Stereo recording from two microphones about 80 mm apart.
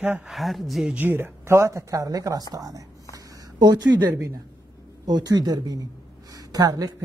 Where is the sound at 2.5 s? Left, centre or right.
Right.